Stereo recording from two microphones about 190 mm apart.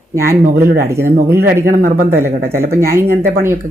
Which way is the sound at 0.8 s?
15° right (ahead or behind).